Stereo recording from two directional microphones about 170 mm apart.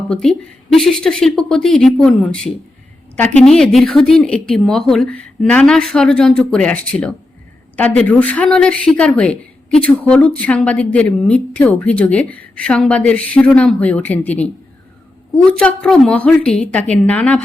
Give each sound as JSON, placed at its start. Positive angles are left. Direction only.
{"t": 0.1, "sound": "speech", "side_deg": 0}
{"t": 15.4, "sound": "speech", "side_deg": 5}